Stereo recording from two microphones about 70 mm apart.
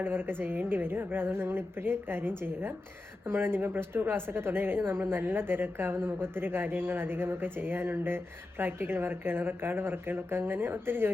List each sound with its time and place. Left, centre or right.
0.0 s a woman's voice: right